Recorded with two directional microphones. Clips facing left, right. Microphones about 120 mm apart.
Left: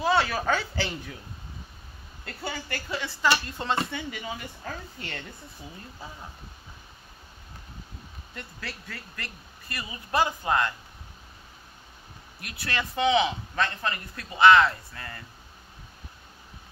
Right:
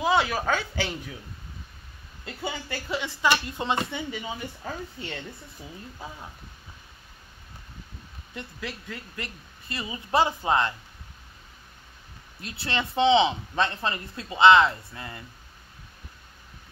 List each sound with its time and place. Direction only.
0.0 s speech: 10° right (ahead or behind)
2.2 s speech: 15° right (ahead or behind)
8.4 s speech: 15° right (ahead or behind)
12.4 s speech: 25° right (ahead or behind)